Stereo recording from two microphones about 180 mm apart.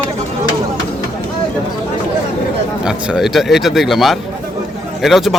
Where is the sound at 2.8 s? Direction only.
5° right (ahead or behind).